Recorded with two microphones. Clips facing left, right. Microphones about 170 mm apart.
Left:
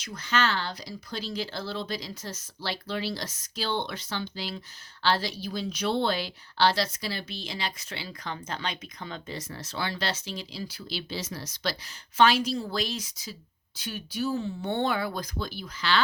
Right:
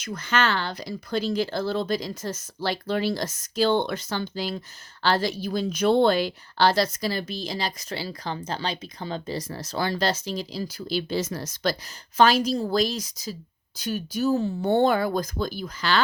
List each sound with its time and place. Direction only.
0.0 s a woman's voice: 55° right (ahead or behind)